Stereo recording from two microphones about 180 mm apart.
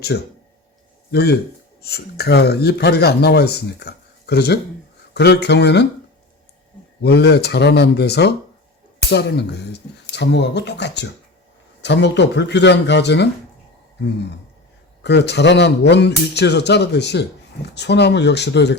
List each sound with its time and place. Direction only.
0.1 s a man's voice: 75° left (ahead or behind)
1.1 s a man's voice: 60° left (ahead or behind)
7.0 s a man's voice: 65° left (ahead or behind)
15.0 s a man's voice: 70° left (ahead or behind)